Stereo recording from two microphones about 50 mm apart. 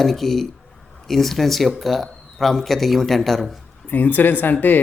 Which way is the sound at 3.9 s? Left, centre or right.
Left.